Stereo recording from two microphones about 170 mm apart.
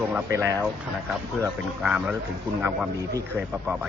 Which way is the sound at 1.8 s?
5° right (ahead or behind).